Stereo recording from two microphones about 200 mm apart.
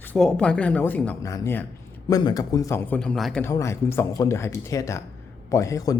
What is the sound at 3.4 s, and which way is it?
Speech, 15° left (ahead or behind).